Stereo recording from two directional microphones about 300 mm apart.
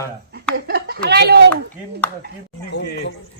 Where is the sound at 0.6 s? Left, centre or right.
Right.